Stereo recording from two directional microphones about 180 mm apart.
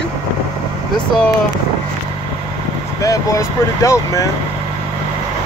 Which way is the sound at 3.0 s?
20° left (ahead or behind).